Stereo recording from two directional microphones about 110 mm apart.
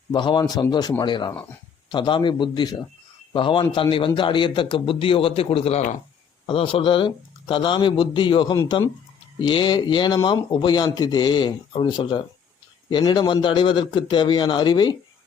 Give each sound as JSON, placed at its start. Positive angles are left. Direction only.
{"t": 0.1, "sound": "a man's voice", "side_deg": 45}